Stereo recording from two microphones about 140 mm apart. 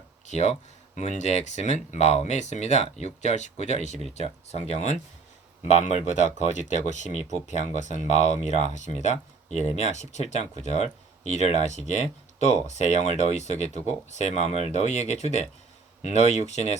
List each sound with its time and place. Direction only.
0.3 s speech: 55° left (ahead or behind)